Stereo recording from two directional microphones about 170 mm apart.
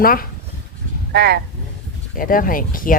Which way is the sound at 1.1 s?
70° right (ahead or behind).